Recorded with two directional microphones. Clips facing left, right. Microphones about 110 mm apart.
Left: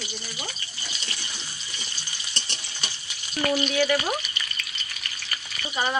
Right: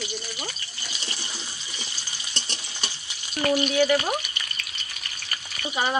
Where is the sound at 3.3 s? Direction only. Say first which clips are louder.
Right 2 dB; 20° right (ahead or behind).